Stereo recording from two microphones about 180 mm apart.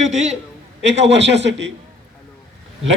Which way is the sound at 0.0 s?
40° right (ahead or behind).